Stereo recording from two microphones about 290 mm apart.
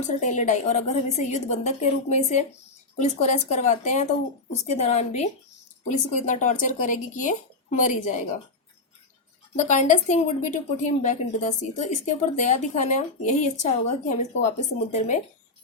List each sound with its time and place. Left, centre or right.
0.2 s a woman's voice: left
9.6 s a woman's voice: left